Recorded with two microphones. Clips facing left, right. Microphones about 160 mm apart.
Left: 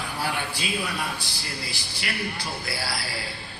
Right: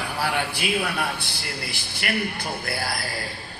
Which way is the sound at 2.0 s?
60° right (ahead or behind).